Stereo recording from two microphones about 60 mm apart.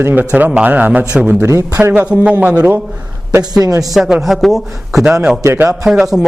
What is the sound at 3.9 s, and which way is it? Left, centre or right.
A man's voice, centre.